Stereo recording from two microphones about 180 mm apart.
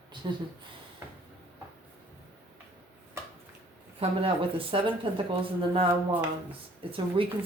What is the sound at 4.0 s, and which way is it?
Speech, 30° right (ahead or behind).